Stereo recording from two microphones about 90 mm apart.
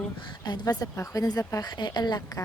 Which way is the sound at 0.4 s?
50° left (ahead or behind).